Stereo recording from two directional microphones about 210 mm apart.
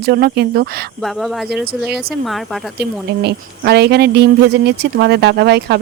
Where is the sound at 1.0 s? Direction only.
Centre (ahead or behind).